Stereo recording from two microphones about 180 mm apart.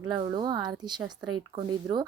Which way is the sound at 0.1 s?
25° right (ahead or behind).